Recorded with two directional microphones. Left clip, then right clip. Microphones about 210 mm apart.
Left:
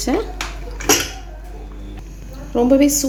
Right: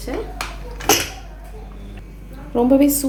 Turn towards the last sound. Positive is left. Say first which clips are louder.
# left 1 dB
turn(degrees=0)  # may be behind; listen again after turning